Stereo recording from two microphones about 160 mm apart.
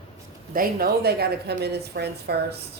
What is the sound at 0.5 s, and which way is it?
A woman's voice, 75° right (ahead or behind).